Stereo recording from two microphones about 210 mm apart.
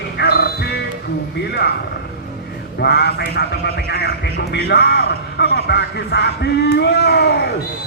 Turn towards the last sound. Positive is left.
turn(degrees=50)  # may be behind; listen again after turning